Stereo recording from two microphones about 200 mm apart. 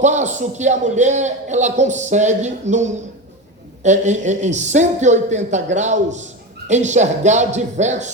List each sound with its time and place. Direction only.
0.0 s a man's voice: 35° right (ahead or behind)